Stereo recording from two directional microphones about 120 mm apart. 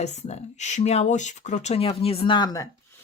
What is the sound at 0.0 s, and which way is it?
Speech, 70° left (ahead or behind).